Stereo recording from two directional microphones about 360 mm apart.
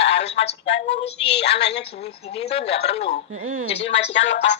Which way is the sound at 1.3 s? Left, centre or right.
Left.